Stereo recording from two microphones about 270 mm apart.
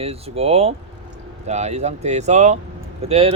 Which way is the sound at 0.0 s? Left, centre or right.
Right.